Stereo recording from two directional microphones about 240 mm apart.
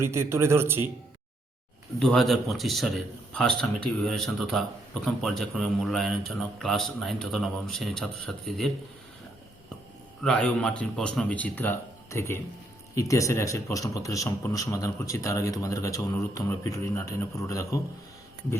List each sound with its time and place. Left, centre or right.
0.0 s a man's voice: centre
2.0 s a man's voice: centre
10.2 s a man's voice: centre